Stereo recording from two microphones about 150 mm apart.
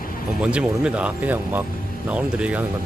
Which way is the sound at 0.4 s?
5° right (ahead or behind).